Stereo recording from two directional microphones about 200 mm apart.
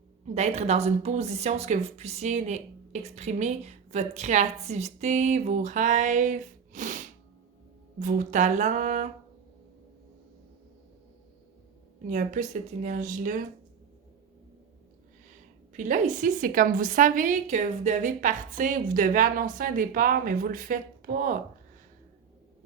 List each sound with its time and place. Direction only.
0.3 s speech: 35° right (ahead or behind)
12.0 s speech: 40° right (ahead or behind)
15.7 s a woman's voice: 40° right (ahead or behind)